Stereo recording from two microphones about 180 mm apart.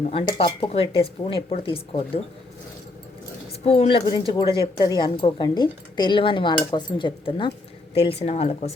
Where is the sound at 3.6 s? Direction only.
35° left (ahead or behind).